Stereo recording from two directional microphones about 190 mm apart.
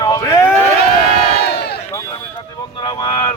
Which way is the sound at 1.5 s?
60° left (ahead or behind).